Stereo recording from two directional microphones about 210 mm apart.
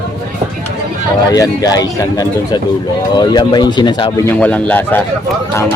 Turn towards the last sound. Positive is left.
turn(degrees=10)  # may be behind; listen again after turning